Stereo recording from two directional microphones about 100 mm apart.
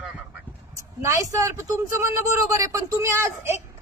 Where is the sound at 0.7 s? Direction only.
30° right (ahead or behind).